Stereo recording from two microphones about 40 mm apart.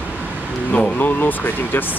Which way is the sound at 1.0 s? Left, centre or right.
Left.